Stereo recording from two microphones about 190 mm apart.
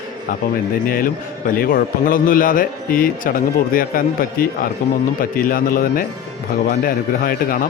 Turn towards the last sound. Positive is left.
turn(degrees=50)  # may be behind; listen again after turning